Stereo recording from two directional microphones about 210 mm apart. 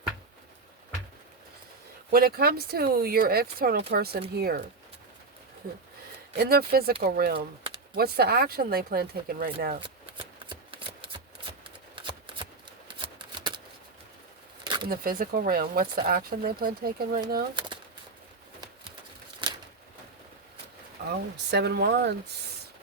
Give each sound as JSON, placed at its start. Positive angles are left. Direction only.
{"t": 2.0, "sound": "speech", "side_deg": -45}
{"t": 6.3, "sound": "speech", "side_deg": -50}
{"t": 7.3, "sound": "speech", "side_deg": -25}
{"t": 7.9, "sound": "speech", "side_deg": -50}
{"t": 10.4, "sound": "shuffling cards", "side_deg": -25}
{"t": 14.6, "sound": "a sound", "side_deg": -20}
{"t": 14.8, "sound": "speech", "side_deg": -45}
{"t": 17.5, "sound": "speech", "side_deg": -20}
{"t": 19.4, "sound": "a sound", "side_deg": -20}
{"t": 21.5, "sound": "speech", "side_deg": -50}